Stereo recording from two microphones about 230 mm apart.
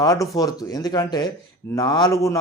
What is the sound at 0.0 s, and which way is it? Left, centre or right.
Speech, centre.